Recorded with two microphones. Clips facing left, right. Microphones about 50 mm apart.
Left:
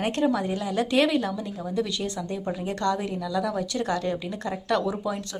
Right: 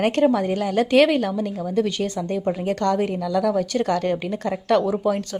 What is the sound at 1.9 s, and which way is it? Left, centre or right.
A woman's voice, right.